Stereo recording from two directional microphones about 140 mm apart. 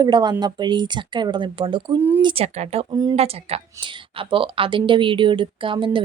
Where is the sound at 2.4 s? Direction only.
50° right (ahead or behind).